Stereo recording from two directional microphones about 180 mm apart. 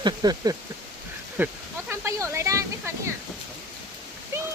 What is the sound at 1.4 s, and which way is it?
Speech, 10° right (ahead or behind).